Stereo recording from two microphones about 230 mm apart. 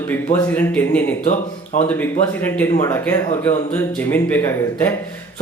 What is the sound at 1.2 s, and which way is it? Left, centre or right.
Speech, left.